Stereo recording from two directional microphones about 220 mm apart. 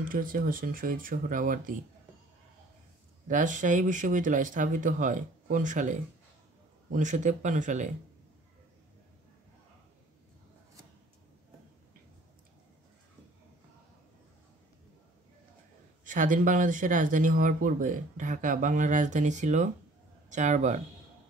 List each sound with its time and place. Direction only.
0.1 s speech: 40° right (ahead or behind)
3.3 s speech: 35° right (ahead or behind)
16.0 s speech: 35° right (ahead or behind)